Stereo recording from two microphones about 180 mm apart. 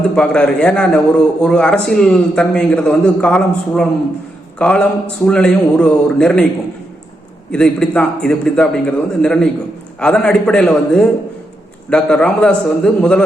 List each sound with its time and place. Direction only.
0.2 s a man's voice: 5° left (ahead or behind)
7.5 s a man's voice: 5° left (ahead or behind)